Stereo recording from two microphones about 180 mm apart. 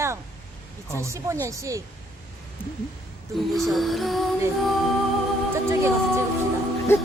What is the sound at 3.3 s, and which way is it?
Speech, centre (ahead or behind).